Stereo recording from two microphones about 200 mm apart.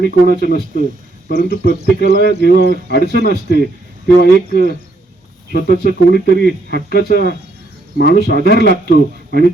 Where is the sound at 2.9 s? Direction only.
55° left (ahead or behind).